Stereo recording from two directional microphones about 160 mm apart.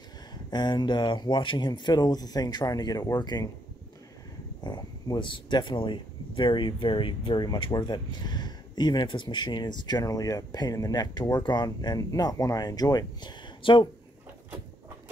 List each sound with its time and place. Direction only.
0.5 s speech: 25° left (ahead or behind)
4.6 s speech: 25° left (ahead or behind)